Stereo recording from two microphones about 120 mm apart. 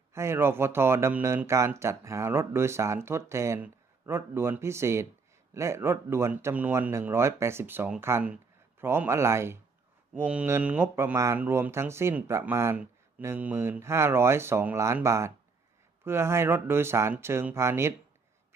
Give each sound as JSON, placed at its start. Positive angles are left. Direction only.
{"t": 0.1, "sound": "speech", "side_deg": -20}